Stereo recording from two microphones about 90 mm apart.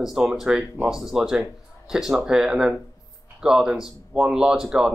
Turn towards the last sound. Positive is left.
turn(degrees=-5)  # may be behind; listen again after turning